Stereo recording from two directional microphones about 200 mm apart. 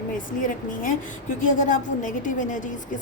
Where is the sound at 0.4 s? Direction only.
40° left (ahead or behind).